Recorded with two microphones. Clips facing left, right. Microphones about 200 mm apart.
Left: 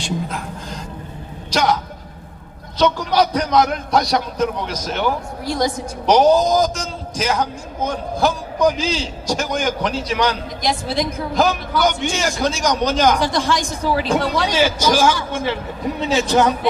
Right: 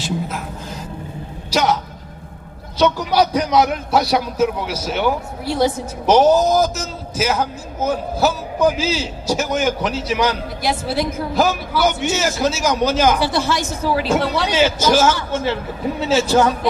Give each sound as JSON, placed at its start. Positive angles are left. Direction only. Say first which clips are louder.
{"t": 0.0, "sound": "a sound", "louder": "right 1 dB", "side_deg": -5}
{"t": 1.5, "sound": "a man's voice", "louder": "even", "side_deg": -10}
{"t": 13.4, "sound": "a man's voice", "louder": "even", "side_deg": 15}
{"t": 13.8, "sound": "a man's voice", "louder": "right 1 dB", "side_deg": -10}
{"t": 14.4, "sound": "a man's voice", "louder": "right 1 dB", "side_deg": 10}
{"t": 16.0, "sound": "a man's voice", "louder": "right 2 dB", "side_deg": -5}
{"t": 16.2, "sound": "a man's voice", "louder": "even", "side_deg": 20}